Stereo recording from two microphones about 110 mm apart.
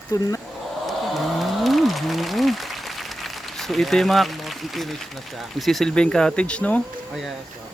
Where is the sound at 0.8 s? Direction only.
Centre (ahead or behind).